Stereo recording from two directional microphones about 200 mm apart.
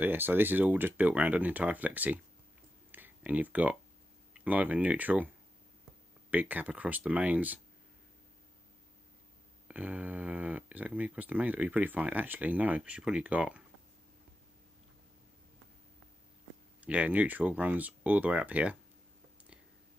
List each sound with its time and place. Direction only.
0.0 s speech: 10° right (ahead or behind)
2.9 s a sound: 10° right (ahead or behind)
4.3 s speech: 5° right (ahead or behind)
6.3 s speech: 10° right (ahead or behind)
9.7 s speech: 5° right (ahead or behind)
16.8 s speech: 5° right (ahead or behind)